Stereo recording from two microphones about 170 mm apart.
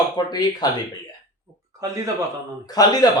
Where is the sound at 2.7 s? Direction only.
20° left (ahead or behind).